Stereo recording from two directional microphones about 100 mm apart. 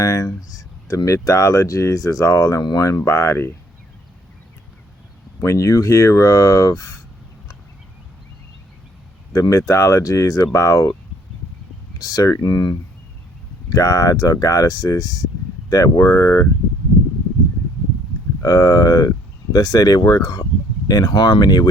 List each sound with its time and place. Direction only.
0.0 s speech: 35° left (ahead or behind)
5.4 s speech: 30° left (ahead or behind)
9.3 s speech: 30° left (ahead or behind)
11.9 s speech: 40° left (ahead or behind)
18.4 s speech: 35° left (ahead or behind)